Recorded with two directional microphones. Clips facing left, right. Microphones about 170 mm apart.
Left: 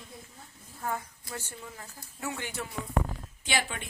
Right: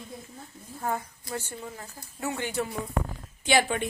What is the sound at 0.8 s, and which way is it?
Speech, 30° right (ahead or behind).